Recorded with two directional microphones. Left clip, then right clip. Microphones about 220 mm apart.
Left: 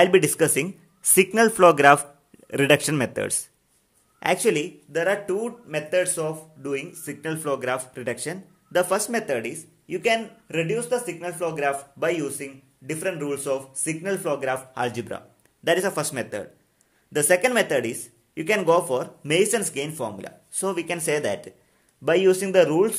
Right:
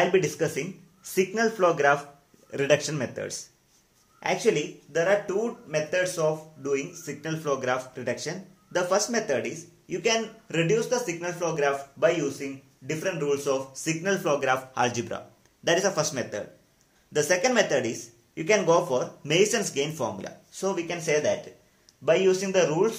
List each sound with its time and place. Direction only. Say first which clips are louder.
0.0 s speech: left 6 dB; 50° left (ahead or behind)